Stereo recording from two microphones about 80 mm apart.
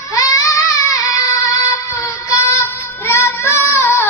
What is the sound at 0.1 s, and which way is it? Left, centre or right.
Child singing, left.